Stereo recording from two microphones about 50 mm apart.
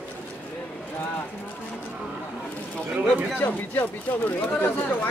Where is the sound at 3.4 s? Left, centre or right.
Left.